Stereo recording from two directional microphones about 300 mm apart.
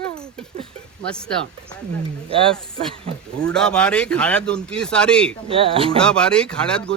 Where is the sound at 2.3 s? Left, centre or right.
Centre.